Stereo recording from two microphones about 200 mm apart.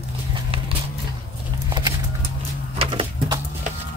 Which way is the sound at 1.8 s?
20° right (ahead or behind).